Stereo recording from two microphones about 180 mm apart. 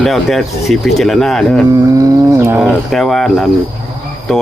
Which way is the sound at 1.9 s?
15° right (ahead or behind).